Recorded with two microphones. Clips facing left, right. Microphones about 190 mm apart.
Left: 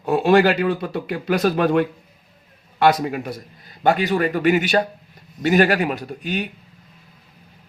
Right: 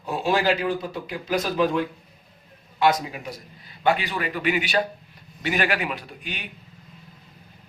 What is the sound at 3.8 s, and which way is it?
A man's voice, 45° left (ahead or behind).